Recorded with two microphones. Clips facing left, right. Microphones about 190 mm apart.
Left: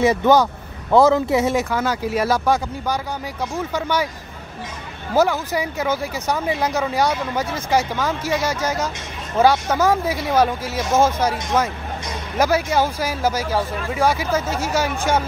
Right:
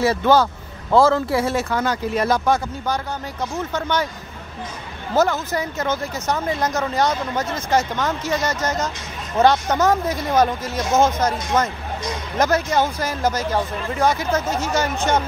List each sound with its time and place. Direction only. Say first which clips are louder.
0.0 s speech: left 1 dB; 15° left (ahead or behind)
5.1 s speech: left 1 dB; 10° left (ahead or behind)